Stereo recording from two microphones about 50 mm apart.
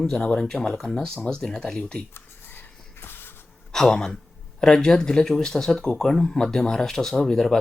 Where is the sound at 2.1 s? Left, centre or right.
Left.